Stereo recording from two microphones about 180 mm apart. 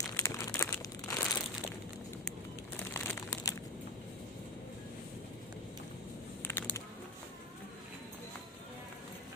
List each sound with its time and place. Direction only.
0.2 s crumpling: 15° left (ahead or behind)
2.9 s crumpling: 15° left (ahead or behind)
6.4 s a sound: 15° left (ahead or behind)